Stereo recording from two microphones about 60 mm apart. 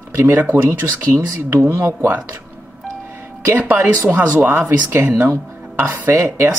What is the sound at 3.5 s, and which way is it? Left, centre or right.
Speech, right.